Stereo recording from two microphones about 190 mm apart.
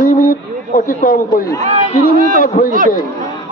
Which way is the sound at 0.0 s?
45° left (ahead or behind).